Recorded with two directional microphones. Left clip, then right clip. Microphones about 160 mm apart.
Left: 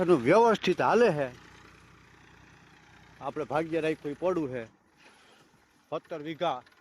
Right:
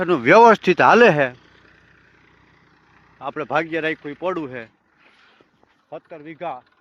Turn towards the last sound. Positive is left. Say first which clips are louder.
# right 1 dB
turn(degrees=30)  # may be behind; listen again after turning